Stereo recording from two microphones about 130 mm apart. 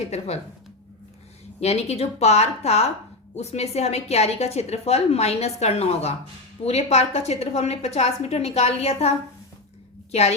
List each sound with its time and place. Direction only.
0.1 s a woman's voice: 55° left (ahead or behind)
1.6 s a woman's voice: 55° left (ahead or behind)